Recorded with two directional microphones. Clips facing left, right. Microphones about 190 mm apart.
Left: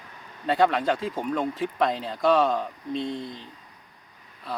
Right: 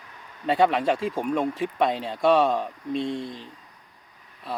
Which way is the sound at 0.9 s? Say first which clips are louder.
Right 3 dB; 30° right (ahead or behind).